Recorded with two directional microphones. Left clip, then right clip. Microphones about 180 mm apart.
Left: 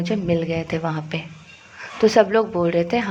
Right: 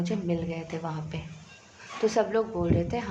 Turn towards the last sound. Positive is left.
turn(degrees=30)  # may be behind; listen again after turning